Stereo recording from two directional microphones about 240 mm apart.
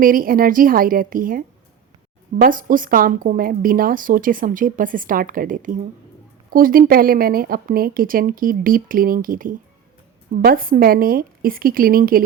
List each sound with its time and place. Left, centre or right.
0.0 s speech: right